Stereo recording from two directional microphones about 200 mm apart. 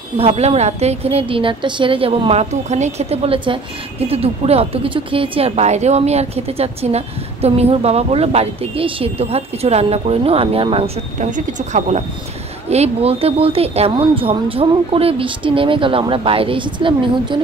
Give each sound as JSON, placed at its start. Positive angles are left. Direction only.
{"t": 0.2, "sound": "a woman's voice", "side_deg": -30}